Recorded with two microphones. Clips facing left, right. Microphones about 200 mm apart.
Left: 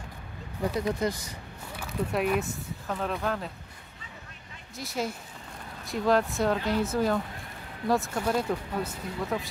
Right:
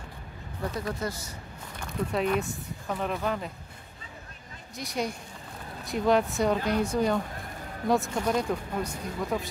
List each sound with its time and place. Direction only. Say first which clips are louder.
0.7 s speech: left 5 dB; 15° left (ahead or behind)
1.8 s speech: even; 5° left (ahead or behind)
4.7 s speech: right 1 dB; centre (ahead or behind)